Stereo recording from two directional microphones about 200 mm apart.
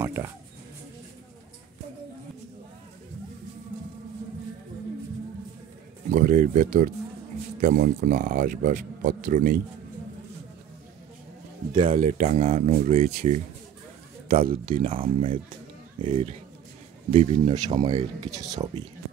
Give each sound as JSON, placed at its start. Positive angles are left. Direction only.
{"t": 0.0, "sound": "a sound", "side_deg": -10}
{"t": 6.0, "sound": "speech", "side_deg": -40}
{"t": 11.7, "sound": "speech", "side_deg": -30}